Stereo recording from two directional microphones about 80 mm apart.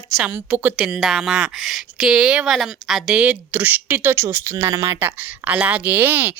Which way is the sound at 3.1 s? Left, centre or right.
Centre.